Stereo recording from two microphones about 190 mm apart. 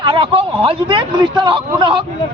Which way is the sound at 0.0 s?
25° right (ahead or behind).